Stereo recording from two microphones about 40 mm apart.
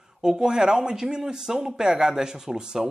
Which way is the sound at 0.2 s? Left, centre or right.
Centre.